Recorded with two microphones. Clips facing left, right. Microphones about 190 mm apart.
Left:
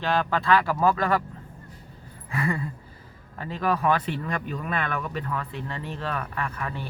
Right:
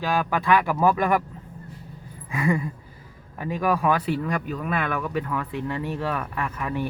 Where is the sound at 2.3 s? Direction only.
15° right (ahead or behind).